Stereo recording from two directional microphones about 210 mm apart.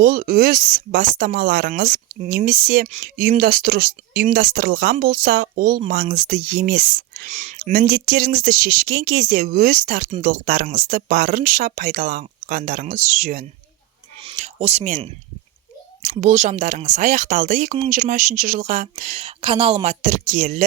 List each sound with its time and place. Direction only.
0.0 s speech: 45° right (ahead or behind)
7.3 s speech: 35° right (ahead or behind)
14.2 s a sound: 30° right (ahead or behind)
16.0 s speech: 35° right (ahead or behind)